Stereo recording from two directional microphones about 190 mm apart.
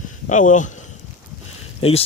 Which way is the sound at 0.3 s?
40° left (ahead or behind).